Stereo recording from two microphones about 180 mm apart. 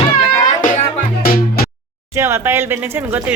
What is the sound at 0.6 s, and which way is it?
Music, 50° left (ahead or behind).